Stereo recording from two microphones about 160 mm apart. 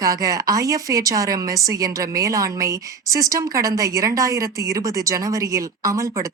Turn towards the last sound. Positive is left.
turn(degrees=-20)  # may be behind; listen again after turning